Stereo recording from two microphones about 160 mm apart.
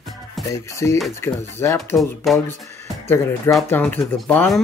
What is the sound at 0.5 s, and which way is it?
Music, 20° left (ahead or behind).